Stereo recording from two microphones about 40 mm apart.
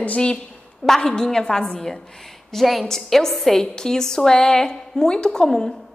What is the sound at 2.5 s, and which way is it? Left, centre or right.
A woman's voice, centre.